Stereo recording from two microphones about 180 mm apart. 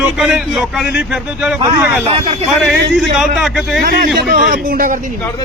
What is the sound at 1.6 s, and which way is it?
Speech, 25° right (ahead or behind).